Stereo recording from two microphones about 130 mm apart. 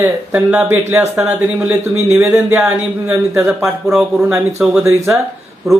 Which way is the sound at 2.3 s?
20° right (ahead or behind).